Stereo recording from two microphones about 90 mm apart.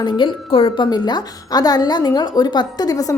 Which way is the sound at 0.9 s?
50° left (ahead or behind).